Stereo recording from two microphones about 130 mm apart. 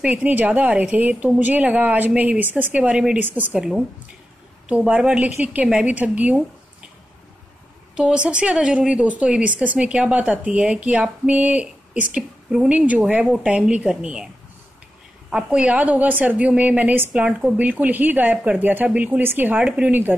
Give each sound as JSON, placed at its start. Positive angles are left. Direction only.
{"t": 0.0, "sound": "a woman's voice", "side_deg": -10}
{"t": 7.9, "sound": "speech", "side_deg": -10}